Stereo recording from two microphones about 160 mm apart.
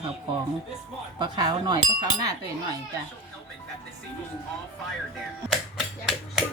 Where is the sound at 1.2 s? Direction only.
25° right (ahead or behind).